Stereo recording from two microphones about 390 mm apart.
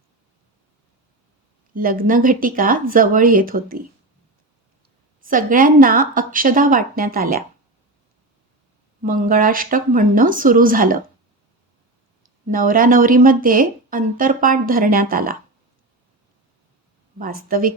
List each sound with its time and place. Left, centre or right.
1.7 s speech: right
5.2 s speech: right
9.0 s speech: right
12.5 s speech: right
17.2 s speech: right